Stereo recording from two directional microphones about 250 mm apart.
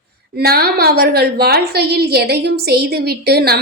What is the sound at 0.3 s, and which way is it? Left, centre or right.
A woman's voice, right.